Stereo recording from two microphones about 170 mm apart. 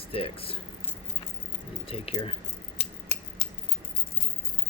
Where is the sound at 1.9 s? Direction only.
35° left (ahead or behind).